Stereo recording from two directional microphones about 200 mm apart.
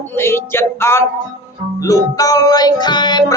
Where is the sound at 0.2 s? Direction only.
10° left (ahead or behind).